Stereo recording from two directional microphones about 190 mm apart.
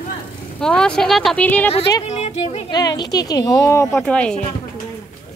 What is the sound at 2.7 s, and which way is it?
Speech, 20° left (ahead or behind).